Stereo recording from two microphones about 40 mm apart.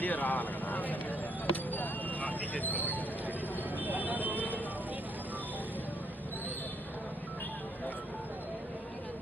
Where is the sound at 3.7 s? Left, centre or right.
Right.